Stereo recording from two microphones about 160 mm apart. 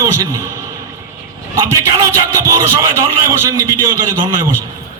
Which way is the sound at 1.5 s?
20° right (ahead or behind).